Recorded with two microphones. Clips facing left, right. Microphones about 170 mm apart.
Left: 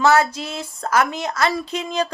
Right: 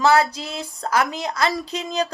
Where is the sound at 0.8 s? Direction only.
30° right (ahead or behind).